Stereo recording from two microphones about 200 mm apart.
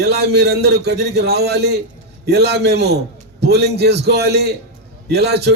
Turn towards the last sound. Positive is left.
turn(degrees=-55)  # may be behind; listen again after turning